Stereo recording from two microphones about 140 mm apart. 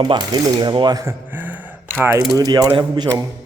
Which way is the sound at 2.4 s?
25° right (ahead or behind).